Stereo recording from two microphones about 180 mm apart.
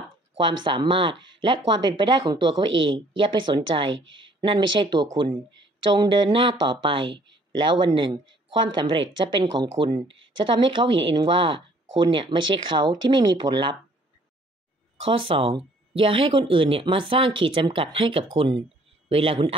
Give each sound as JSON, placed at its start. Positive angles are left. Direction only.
{"t": 0.4, "sound": "speech", "side_deg": -25}
{"t": 15.0, "sound": "speech", "side_deg": -30}